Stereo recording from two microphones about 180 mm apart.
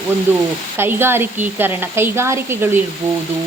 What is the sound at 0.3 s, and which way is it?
Frying, 10° right (ahead or behind).